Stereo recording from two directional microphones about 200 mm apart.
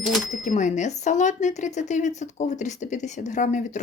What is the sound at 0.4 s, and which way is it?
Speech, 40° left (ahead or behind).